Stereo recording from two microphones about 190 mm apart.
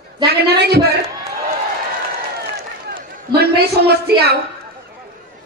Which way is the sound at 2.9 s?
55° right (ahead or behind).